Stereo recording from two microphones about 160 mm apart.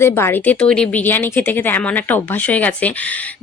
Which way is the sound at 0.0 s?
15° left (ahead or behind).